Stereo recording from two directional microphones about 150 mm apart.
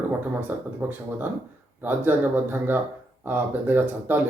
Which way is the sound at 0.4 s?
10° right (ahead or behind).